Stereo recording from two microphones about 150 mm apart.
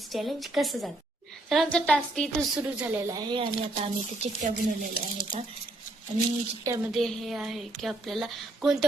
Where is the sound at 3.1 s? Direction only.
30° right (ahead or behind).